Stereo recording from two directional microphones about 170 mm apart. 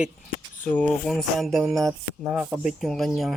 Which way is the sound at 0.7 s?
5° left (ahead or behind).